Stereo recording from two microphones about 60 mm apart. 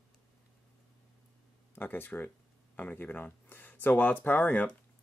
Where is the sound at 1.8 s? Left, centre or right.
Left.